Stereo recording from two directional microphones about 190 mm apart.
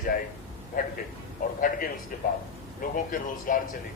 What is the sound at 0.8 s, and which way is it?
Speech, 45° left (ahead or behind).